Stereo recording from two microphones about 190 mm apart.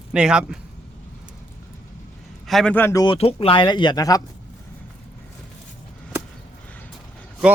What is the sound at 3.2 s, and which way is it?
Speech, 30° left (ahead or behind).